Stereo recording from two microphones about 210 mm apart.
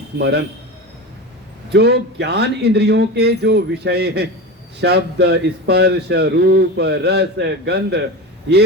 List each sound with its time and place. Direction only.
0.2 s a man's voice: 50° right (ahead or behind)
1.7 s a man's voice: 50° right (ahead or behind)